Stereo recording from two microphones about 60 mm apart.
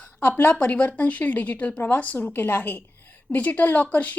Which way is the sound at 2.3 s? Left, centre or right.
Left.